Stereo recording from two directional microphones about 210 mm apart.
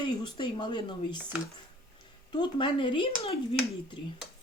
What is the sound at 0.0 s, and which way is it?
Speech, 20° left (ahead or behind).